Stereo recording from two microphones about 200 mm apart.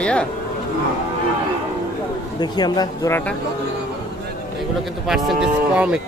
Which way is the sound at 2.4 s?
20° left (ahead or behind).